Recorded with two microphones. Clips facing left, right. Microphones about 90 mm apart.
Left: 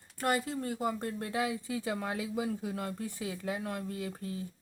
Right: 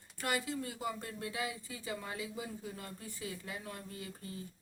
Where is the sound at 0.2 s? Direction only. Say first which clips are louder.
Left 5 dB; 40° left (ahead or behind).